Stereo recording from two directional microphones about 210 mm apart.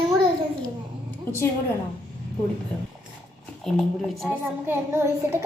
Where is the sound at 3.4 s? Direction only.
Centre (ahead or behind).